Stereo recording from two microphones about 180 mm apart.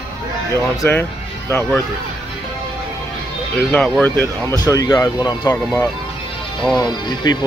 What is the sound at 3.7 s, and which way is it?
Speech, 5° left (ahead or behind).